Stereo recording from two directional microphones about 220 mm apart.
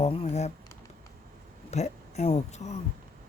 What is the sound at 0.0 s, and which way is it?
Speech, 30° left (ahead or behind).